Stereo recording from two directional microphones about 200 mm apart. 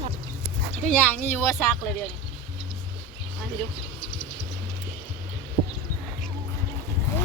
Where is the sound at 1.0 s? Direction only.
10° left (ahead or behind).